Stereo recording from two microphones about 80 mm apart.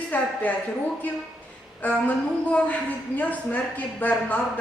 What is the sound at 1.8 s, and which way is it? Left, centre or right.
A woman's voice, centre.